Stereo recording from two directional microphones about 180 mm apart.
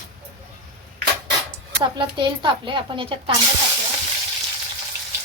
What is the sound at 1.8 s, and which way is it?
Speech, 25° right (ahead or behind).